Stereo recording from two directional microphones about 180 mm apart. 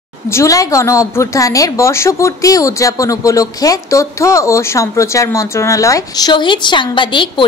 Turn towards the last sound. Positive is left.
turn(degrees=25)  # may be behind; listen again after turning